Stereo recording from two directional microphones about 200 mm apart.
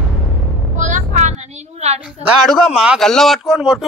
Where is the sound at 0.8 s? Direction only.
40° right (ahead or behind).